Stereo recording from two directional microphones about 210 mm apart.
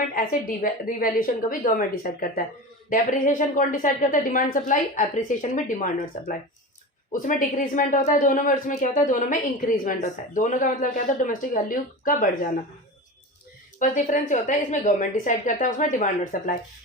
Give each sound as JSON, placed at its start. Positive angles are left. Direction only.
{"t": 0.1, "sound": "speech", "side_deg": 40}
{"t": 13.7, "sound": "speech", "side_deg": 35}